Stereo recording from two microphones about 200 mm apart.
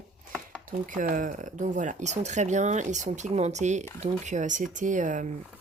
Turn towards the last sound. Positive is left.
turn(degrees=-40)  # may be behind; listen again after turning